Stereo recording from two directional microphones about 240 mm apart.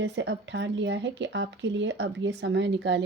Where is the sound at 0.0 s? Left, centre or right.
Right.